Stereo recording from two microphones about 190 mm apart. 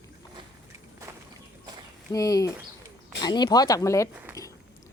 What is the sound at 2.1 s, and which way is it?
A woman's voice, 20° left (ahead or behind).